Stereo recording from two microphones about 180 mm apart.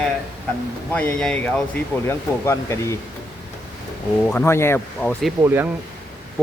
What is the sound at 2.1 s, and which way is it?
Speech, 15° left (ahead or behind).